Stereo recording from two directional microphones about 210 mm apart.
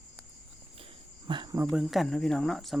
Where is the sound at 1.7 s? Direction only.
Centre (ahead or behind).